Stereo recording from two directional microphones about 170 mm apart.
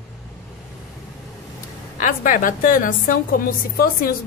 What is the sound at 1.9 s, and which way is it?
A woman's voice, 50° left (ahead or behind).